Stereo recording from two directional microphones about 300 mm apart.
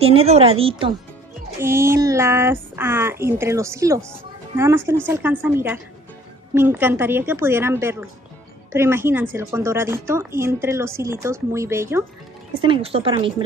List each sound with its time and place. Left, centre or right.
0.0 s a woman's voice: centre